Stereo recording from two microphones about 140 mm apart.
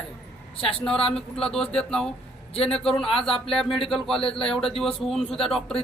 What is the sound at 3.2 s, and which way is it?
Speech, 40° left (ahead or behind).